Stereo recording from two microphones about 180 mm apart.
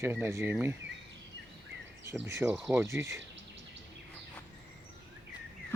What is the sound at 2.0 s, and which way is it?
Speech, 15° right (ahead or behind).